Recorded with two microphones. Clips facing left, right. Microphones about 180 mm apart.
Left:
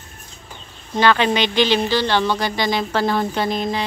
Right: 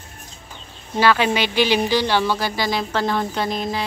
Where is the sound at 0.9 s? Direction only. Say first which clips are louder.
Left 1 dB; 10° right (ahead or behind).